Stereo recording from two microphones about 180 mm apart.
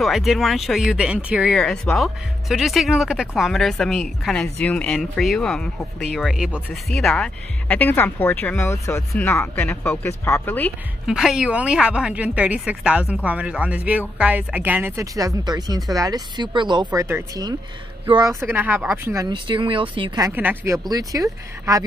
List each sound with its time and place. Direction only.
0.0 s speech: centre (ahead or behind)
11.1 s speech: 5° right (ahead or behind)
19.1 s speech: 25° right (ahead or behind)
20.2 s speech: 15° right (ahead or behind)